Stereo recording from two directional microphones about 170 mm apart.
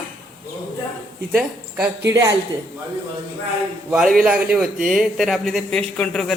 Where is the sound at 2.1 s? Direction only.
20° right (ahead or behind).